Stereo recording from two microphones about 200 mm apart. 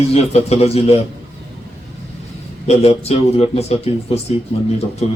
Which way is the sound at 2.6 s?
30° left (ahead or behind).